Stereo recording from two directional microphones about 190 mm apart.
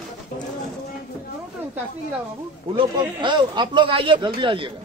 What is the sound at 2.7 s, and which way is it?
Speech, 25° right (ahead or behind).